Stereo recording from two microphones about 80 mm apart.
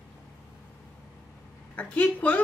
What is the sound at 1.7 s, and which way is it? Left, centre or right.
Speech, centre.